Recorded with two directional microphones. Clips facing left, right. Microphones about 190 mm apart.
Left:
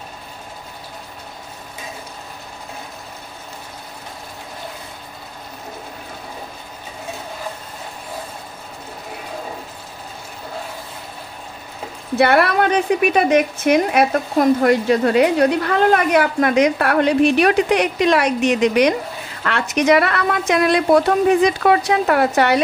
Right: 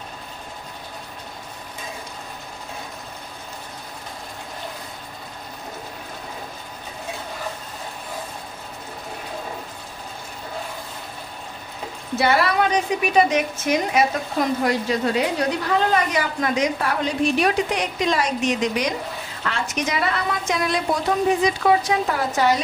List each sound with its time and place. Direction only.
12.2 s a woman's voice: 60° left (ahead or behind)